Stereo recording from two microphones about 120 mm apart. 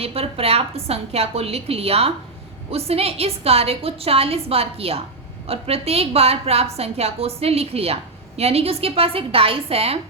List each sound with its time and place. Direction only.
0.0 s a woman's voice: 55° right (ahead or behind)